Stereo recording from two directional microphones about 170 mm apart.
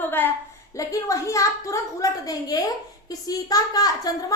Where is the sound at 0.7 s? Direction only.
20° left (ahead or behind).